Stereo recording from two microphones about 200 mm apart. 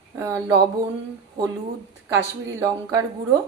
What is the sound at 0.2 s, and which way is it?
Speech, 15° right (ahead or behind).